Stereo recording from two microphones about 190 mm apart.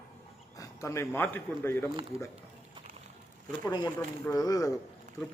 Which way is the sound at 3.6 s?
20° left (ahead or behind).